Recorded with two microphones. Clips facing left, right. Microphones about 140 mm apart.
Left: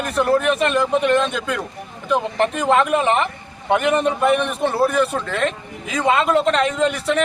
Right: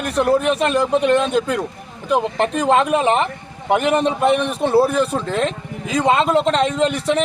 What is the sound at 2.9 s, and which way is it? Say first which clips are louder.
A man's voice: right 1 dB; 30° right (ahead or behind).